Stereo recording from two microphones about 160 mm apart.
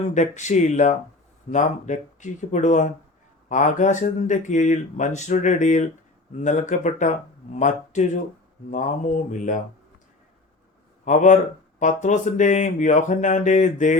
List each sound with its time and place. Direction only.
0.1 s speech: 50° left (ahead or behind)
11.0 s speech: 50° left (ahead or behind)